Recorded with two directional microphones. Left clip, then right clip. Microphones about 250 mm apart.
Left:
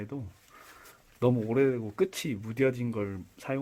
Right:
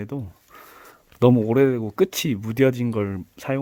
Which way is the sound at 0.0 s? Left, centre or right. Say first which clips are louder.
Right 7 dB; right.